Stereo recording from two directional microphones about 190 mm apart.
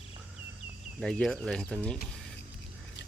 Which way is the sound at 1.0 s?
Centre (ahead or behind).